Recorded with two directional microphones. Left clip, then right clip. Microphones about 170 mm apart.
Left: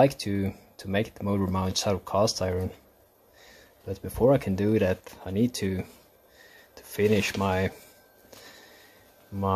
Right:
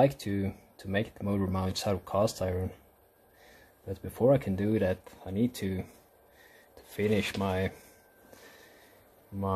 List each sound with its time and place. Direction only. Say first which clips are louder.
0.0 s speech: left 4 dB; 15° left (ahead or behind)
3.8 s speech: left 3 dB; 15° left (ahead or behind)
6.7 s filing: left 5 dB; 20° left (ahead or behind)